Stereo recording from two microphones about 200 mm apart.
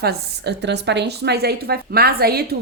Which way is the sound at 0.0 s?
55° right (ahead or behind).